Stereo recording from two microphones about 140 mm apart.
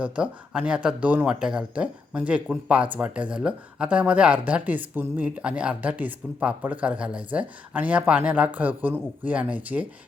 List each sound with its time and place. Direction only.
0.0 s speech: 10° right (ahead or behind)